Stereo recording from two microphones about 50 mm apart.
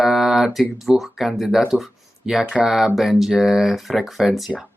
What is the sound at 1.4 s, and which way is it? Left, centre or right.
Speech, centre.